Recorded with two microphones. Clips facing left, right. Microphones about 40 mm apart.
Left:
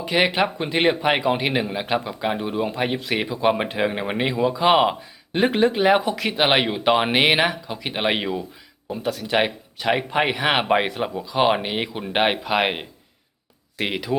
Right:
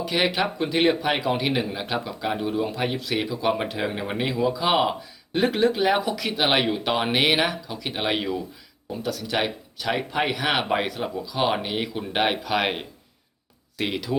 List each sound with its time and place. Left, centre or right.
0.0 s speech: left